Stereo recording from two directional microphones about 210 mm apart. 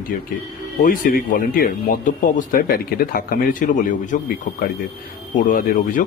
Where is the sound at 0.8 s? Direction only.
45° left (ahead or behind).